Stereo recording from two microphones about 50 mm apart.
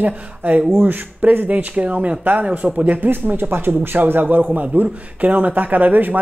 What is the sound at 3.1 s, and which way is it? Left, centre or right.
Speech, right.